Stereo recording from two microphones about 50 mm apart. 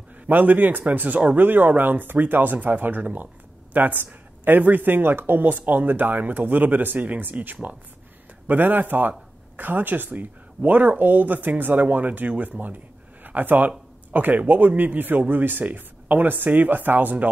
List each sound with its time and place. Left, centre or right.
0.3 s speech: right